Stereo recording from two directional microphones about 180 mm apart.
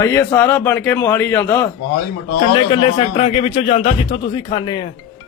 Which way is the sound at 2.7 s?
30° left (ahead or behind).